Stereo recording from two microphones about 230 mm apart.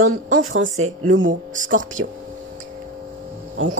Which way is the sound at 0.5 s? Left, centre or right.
Right.